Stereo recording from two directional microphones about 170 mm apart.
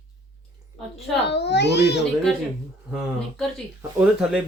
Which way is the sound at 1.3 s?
90° left.